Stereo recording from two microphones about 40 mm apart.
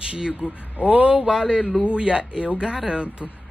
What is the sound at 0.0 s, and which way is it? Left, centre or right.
Speech, right.